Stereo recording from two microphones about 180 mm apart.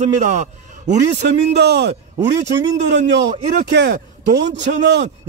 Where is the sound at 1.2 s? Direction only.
70° right (ahead or behind).